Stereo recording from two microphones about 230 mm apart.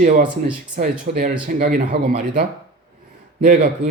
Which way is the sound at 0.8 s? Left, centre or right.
Right.